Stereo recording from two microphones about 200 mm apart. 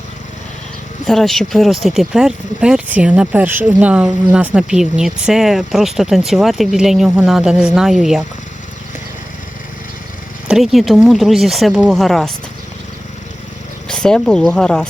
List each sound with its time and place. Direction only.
1.0 s speech: centre (ahead or behind)
10.5 s speech: centre (ahead or behind)
13.8 s speech: 5° left (ahead or behind)